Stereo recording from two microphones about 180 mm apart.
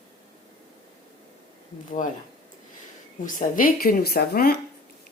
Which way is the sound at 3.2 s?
50° left (ahead or behind).